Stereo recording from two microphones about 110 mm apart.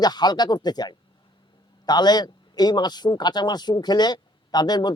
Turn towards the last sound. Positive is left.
turn(degrees=40)  # may be behind; listen again after turning